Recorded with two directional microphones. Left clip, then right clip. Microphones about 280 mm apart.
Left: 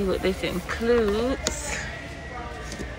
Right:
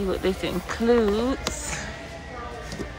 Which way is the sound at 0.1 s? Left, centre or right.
Centre.